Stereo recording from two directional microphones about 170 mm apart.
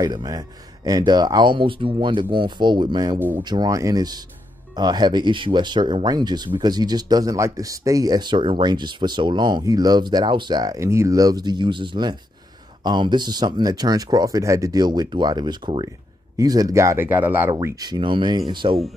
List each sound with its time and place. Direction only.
0.0 s speech: 25° right (ahead or behind)